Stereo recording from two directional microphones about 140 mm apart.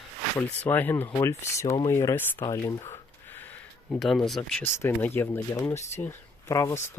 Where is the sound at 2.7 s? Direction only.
25° left (ahead or behind).